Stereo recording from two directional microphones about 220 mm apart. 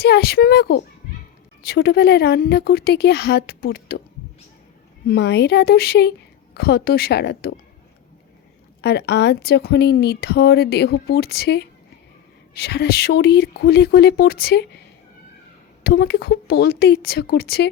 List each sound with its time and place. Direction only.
0.0 s a woman's voice: 45° left (ahead or behind)
5.0 s a woman's voice: 50° left (ahead or behind)
8.8 s a woman's voice: 50° left (ahead or behind)
15.8 s a woman's voice: 45° left (ahead or behind)